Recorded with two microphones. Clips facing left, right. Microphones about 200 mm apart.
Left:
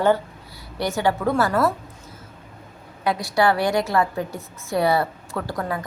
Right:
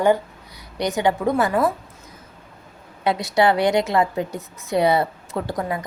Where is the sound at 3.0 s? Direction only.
25° right (ahead or behind).